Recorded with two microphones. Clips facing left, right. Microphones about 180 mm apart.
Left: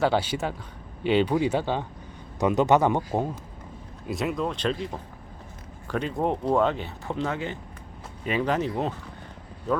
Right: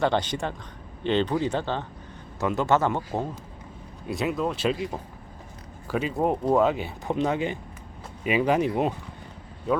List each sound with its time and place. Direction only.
0.0 s speech: 5° left (ahead or behind)
4.0 s speech: centre (ahead or behind)
5.9 s speech: 5° right (ahead or behind)